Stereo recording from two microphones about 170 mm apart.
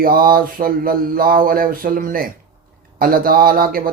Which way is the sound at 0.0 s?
55° right (ahead or behind).